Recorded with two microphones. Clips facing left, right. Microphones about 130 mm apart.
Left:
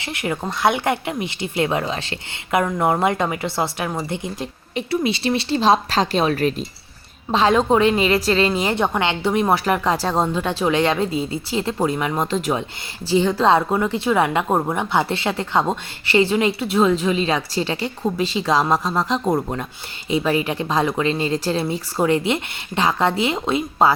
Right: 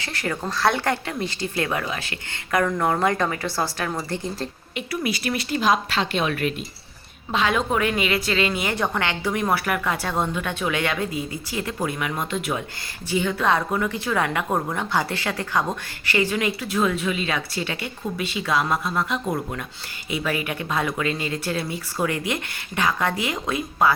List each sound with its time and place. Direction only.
0.0 s a woman's voice: 20° left (ahead or behind)